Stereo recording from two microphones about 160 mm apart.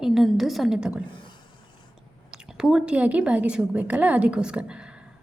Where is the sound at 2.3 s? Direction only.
5° right (ahead or behind).